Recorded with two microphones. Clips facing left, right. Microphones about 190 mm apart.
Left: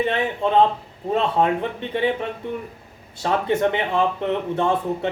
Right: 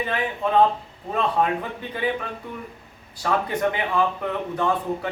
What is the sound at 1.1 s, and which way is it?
Speech, 25° left (ahead or behind).